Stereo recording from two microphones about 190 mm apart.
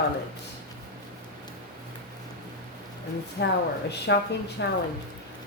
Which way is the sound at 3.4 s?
65° left (ahead or behind).